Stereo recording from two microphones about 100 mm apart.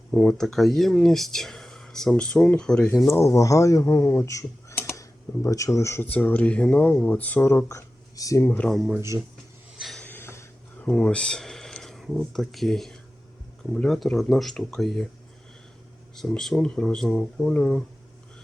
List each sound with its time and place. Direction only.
0.1 s speech: 5° left (ahead or behind)
3.1 s speech: 30° left (ahead or behind)
8.4 s speech: 15° left (ahead or behind)
9.0 s speech: 30° right (ahead or behind)
9.7 s a sound: centre (ahead or behind)
10.0 s a sound: 20° left (ahead or behind)
10.8 s speech: 10° left (ahead or behind)
16.1 s speech: 5° left (ahead or behind)